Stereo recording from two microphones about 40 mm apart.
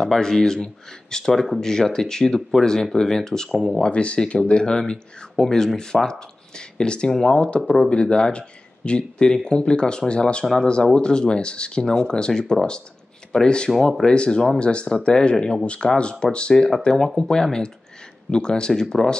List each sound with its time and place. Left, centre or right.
0.0 s speech: centre
3.5 s speech: centre
3.8 s speech: left
5.3 s speech: centre
7.9 s speech: left
10.4 s speech: centre
11.0 s speech: left